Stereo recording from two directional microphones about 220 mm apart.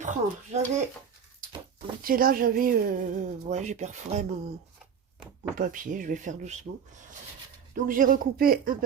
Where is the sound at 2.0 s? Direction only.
40° right (ahead or behind).